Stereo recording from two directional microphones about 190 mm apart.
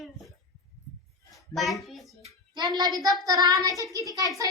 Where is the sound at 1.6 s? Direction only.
Centre (ahead or behind).